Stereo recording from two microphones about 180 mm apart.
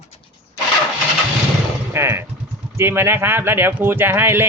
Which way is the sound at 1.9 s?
15° right (ahead or behind).